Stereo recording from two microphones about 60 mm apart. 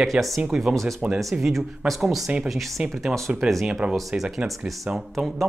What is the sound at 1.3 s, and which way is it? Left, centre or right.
Speech, centre.